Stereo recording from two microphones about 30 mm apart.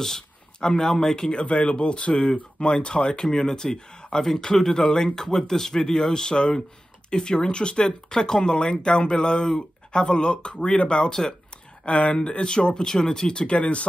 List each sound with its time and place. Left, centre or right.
0.0 s speech: centre
1.3 s speech: left
4.2 s speech: centre; by 11.1 s left
11.1 s speech: left
11.8 s speech: left
12.2 s speech: left
13.3 s speech: left
13.6 s speech: left